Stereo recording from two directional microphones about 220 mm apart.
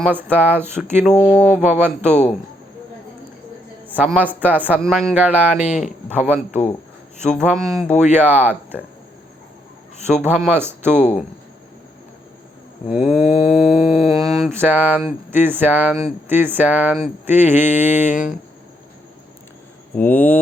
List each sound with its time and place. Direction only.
0.0 s speech: 10° right (ahead or behind)
1.2 s speech: 5° left (ahead or behind)
1.8 s speech: 10° right (ahead or behind)
3.8 s speech: 5° right (ahead or behind)
10.2 s speech: 5° right (ahead or behind)
12.9 s speech: 5° right (ahead or behind)
13.8 s speech: centre (ahead or behind)
14.1 s speech: 15° right (ahead or behind)
20.0 s speech: 10° left (ahead or behind)